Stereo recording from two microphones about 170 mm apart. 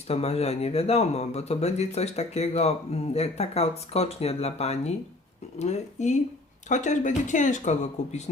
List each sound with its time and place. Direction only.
0.1 s speech: 35° left (ahead or behind)